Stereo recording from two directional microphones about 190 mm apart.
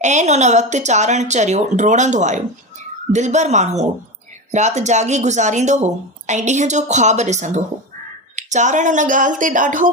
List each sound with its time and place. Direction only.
0.0 s speech: 40° right (ahead or behind)